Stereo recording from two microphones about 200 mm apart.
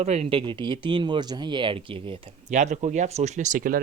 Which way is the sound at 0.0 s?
35° right (ahead or behind).